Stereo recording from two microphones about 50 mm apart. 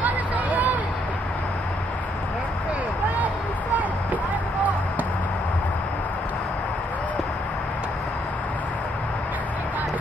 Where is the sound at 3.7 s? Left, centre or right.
Right.